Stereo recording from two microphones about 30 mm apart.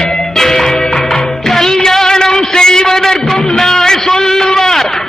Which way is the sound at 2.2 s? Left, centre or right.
Left.